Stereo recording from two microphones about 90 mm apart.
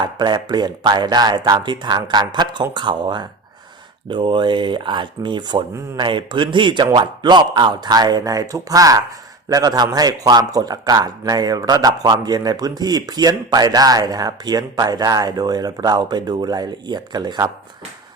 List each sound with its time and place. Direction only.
0.0 s speech: 55° right (ahead or behind)